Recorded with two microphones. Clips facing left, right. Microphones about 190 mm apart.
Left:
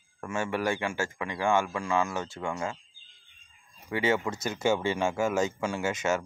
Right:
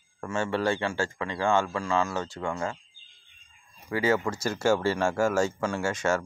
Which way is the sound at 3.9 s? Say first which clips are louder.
Right 2 dB; 25° left (ahead or behind).